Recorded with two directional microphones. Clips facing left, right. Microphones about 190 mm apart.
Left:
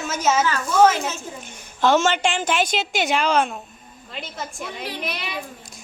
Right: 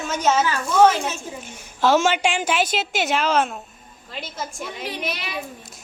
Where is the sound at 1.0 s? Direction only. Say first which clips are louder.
Right 1 dB; 10° right (ahead or behind).